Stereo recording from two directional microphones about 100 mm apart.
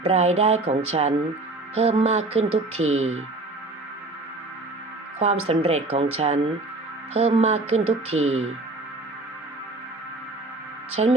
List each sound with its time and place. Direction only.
0.0 s speech: 90° right
5.2 s speech: 90° right
11.0 s music: 80° right